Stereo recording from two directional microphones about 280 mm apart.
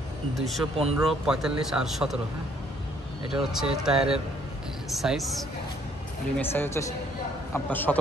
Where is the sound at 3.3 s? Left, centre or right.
Centre.